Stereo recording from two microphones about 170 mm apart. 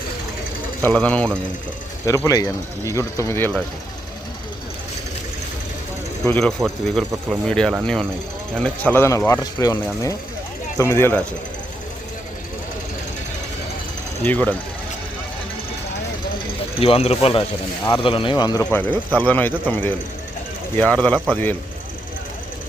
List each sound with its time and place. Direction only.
0.8 s speech: 10° left (ahead or behind)
2.0 s speech: 20° left (ahead or behind)
6.2 s speech: 10° left (ahead or behind)
14.3 s speech: 10° left (ahead or behind)
16.8 s speech: 35° left (ahead or behind)
18.6 s speech: 10° left (ahead or behind)